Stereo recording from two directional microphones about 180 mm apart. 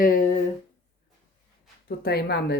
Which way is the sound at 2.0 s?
65° left (ahead or behind).